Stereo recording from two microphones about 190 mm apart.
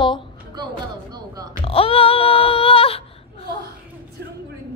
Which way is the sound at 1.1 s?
20° right (ahead or behind).